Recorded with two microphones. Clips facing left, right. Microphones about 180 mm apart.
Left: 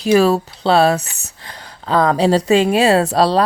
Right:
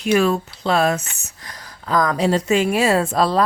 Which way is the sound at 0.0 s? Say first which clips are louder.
Left 4 dB; 35° left (ahead or behind).